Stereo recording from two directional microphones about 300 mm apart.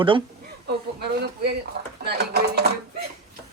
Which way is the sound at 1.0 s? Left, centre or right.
Right.